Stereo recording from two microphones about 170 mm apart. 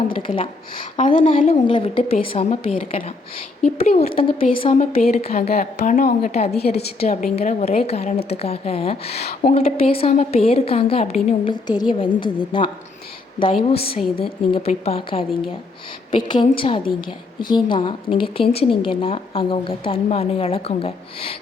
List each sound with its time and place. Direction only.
0.2 s speech: 30° left (ahead or behind)
0.9 s a woman's voice: 40° left (ahead or behind)
1.6 s a woman's voice: 30° left (ahead or behind)